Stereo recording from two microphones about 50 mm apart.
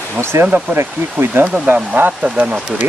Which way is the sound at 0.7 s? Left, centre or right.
Right.